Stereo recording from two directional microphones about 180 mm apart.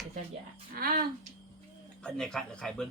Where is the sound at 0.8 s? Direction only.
55° right (ahead or behind).